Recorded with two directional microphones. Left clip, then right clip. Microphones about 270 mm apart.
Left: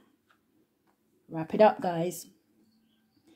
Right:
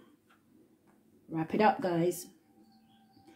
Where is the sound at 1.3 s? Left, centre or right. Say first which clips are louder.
Left 5 dB; left.